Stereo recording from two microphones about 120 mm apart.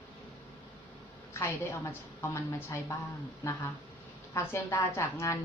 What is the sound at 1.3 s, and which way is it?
A woman's voice, 20° left (ahead or behind).